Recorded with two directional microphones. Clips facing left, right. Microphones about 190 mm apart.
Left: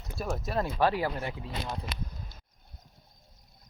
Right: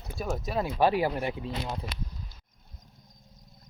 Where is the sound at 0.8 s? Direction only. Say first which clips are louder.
Right 4 dB; 15° right (ahead or behind).